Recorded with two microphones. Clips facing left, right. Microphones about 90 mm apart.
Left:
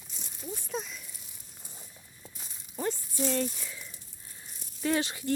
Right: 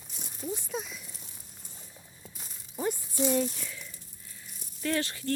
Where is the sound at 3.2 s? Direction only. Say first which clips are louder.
Right 3 dB; 10° right (ahead or behind).